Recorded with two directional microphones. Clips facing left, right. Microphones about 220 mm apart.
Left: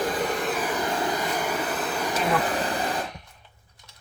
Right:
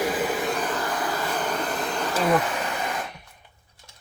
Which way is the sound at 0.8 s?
20° left (ahead or behind).